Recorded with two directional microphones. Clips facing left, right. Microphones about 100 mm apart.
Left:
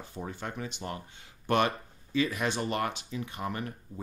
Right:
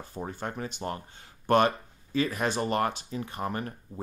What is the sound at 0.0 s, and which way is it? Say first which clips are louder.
Speech: right 3 dB; 40° right (ahead or behind).